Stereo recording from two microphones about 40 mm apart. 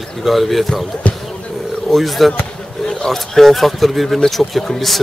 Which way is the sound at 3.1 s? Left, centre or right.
Centre.